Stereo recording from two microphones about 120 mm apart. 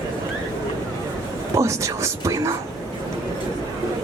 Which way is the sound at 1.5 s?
25° right (ahead or behind).